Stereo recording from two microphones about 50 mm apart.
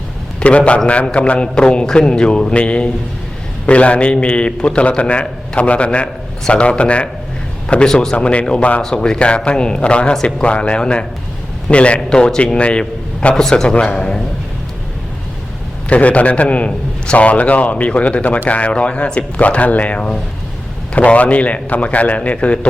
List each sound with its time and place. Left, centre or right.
0.3 s a man's voice: left
13.3 s a man's voice: centre
15.9 s a man's voice: left